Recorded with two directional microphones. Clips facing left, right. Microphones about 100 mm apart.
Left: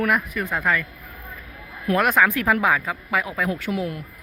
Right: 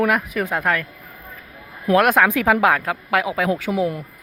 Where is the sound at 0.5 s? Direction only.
55° right (ahead or behind).